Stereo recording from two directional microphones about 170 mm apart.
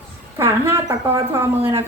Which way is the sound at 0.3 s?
15° right (ahead or behind).